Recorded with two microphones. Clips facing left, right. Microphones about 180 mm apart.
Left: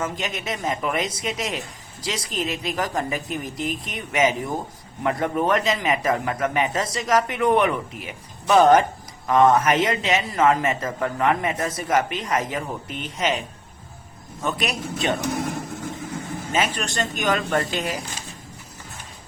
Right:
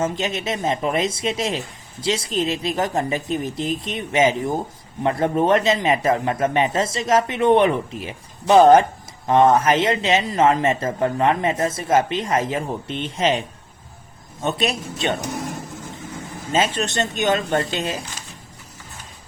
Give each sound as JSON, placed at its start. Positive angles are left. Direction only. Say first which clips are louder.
{"t": 0.0, "sound": "a man's voice", "louder": "right 5 dB", "side_deg": -25}
{"t": 14.4, "sound": "a man's voice", "louder": "right 3 dB", "side_deg": -25}
{"t": 16.5, "sound": "a man's voice", "louder": "right 4 dB", "side_deg": -25}